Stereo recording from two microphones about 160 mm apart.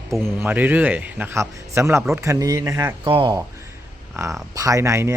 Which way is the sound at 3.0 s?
35° right (ahead or behind).